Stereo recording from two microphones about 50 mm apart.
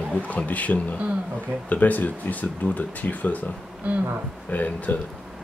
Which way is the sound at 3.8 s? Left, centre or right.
Right.